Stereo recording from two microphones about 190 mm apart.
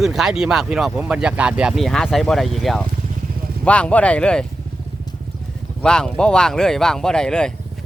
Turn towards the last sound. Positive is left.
turn(degrees=5)  # may be behind; listen again after turning